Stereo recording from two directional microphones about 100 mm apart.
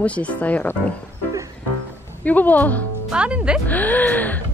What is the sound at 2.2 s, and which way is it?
Speech, 15° left (ahead or behind).